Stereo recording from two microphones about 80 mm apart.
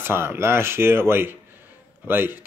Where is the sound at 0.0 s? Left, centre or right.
Right.